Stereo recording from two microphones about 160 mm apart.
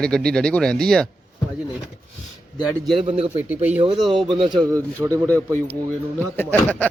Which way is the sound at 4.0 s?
Centre (ahead or behind).